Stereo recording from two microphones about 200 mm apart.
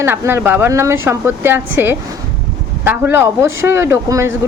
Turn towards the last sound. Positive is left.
turn(degrees=-15)  # may be behind; listen again after turning